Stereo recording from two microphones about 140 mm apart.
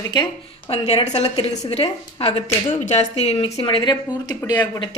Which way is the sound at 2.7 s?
55° left (ahead or behind).